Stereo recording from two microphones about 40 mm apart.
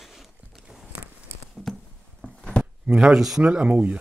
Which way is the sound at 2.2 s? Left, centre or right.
Left.